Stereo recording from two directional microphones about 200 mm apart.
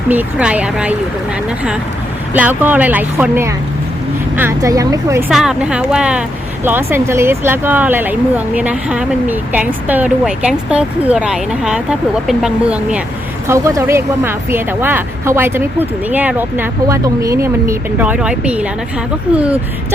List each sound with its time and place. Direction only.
0.1 s speech: 5° right (ahead or behind)
2.3 s speech: 10° right (ahead or behind)
5.3 s speech: centre (ahead or behind)